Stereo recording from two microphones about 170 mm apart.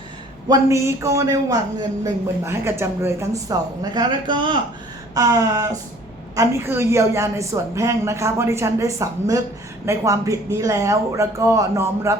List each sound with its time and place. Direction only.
0.4 s a man's voice: 20° right (ahead or behind)